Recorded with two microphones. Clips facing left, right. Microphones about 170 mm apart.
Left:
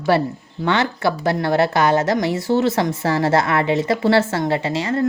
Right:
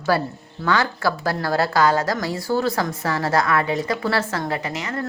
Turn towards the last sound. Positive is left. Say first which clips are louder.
# left 7 dB
turn(degrees=30)  # may be behind; listen again after turning